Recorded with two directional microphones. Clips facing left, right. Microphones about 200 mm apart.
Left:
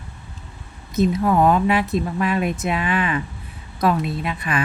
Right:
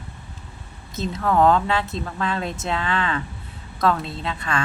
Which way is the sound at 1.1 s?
15° left (ahead or behind).